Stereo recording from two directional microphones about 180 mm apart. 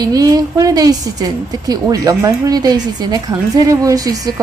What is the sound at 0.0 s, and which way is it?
A woman's voice, 20° right (ahead or behind).